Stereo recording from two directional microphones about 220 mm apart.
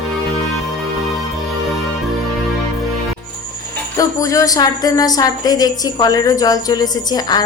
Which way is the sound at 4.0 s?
15° left (ahead or behind).